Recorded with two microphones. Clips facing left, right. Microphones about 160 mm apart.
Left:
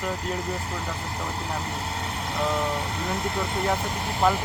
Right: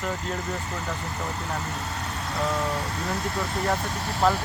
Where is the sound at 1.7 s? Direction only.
30° left (ahead or behind).